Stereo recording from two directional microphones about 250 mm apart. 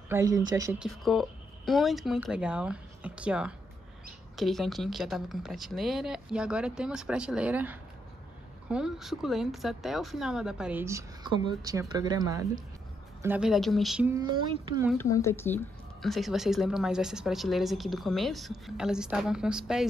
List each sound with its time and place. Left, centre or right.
0.1 s speech: centre
0.8 s speech: centre
14.3 s speech: centre
15.0 s speech: centre